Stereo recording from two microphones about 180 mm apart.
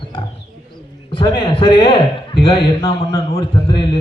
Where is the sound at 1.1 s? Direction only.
30° left (ahead or behind).